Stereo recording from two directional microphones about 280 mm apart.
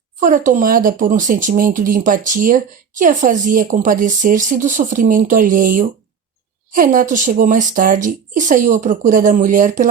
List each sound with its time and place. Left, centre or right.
0.2 s speech: right